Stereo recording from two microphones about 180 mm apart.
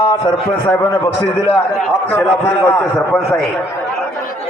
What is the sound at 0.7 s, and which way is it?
Speech, 15° left (ahead or behind).